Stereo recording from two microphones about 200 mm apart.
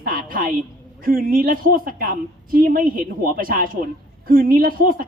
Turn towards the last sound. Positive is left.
turn(degrees=-45)  # may be behind; listen again after turning